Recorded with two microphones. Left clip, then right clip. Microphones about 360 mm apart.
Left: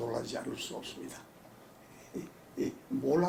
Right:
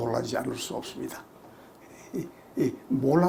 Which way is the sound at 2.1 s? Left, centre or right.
Right.